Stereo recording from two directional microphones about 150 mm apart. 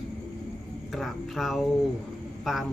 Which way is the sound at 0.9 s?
Centre (ahead or behind).